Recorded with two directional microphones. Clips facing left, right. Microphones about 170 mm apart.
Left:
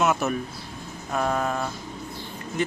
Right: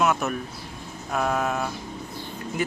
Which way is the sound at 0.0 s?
5° left (ahead or behind).